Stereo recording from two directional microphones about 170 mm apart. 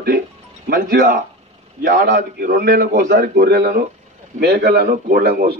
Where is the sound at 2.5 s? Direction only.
60° right (ahead or behind).